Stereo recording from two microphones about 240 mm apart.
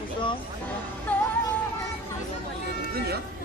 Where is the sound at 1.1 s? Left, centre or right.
Centre.